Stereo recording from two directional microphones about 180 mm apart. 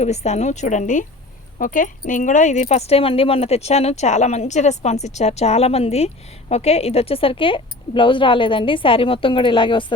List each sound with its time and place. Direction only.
0.0 s a woman's voice: 40° left (ahead or behind)